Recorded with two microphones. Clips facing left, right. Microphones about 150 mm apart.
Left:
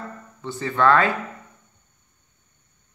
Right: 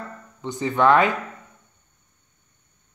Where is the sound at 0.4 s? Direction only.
15° right (ahead or behind).